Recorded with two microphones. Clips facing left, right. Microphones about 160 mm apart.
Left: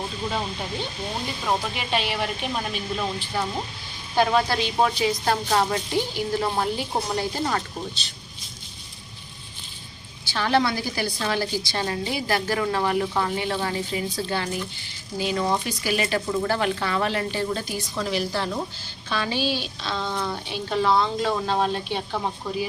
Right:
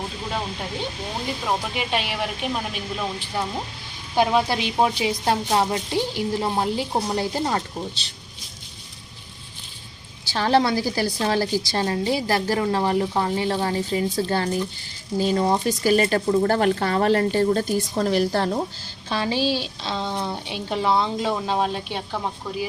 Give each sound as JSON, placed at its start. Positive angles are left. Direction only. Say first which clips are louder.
{"t": 1.8, "sound": "speech", "louder": "even", "side_deg": -5}
{"t": 10.3, "sound": "a woman's voice", "louder": "right 3 dB", "side_deg": -35}
{"t": 19.1, "sound": "speech", "louder": "right 3 dB", "side_deg": -30}